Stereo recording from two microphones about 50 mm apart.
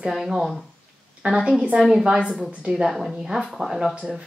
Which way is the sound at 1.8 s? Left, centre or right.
Centre.